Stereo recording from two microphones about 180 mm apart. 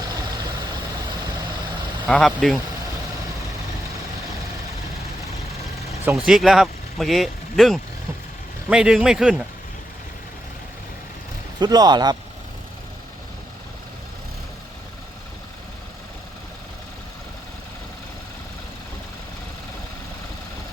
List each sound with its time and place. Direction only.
2.0 s a man's voice: 5° left (ahead or behind)
6.1 s a man's voice: 5° right (ahead or behind)
11.6 s a man's voice: 20° right (ahead or behind)